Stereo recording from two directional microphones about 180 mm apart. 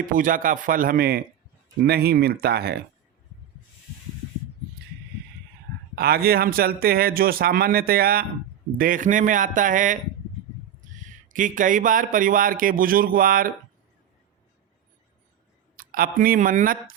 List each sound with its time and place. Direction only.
0.1 s a man's voice: 50° right (ahead or behind)
6.0 s a man's voice: 60° right (ahead or behind)
11.3 s speech: 45° right (ahead or behind)
15.7 s speech: 55° right (ahead or behind)